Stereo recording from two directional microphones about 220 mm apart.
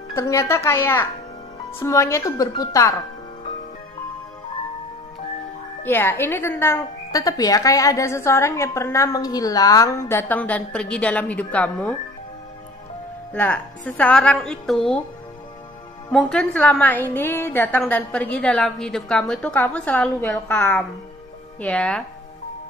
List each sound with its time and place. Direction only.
0.1 s a woman's voice: 15° left (ahead or behind)
5.9 s a woman's voice: 10° left (ahead or behind)
13.3 s a woman's voice: 5° left (ahead or behind)
16.1 s a woman's voice: 5° left (ahead or behind)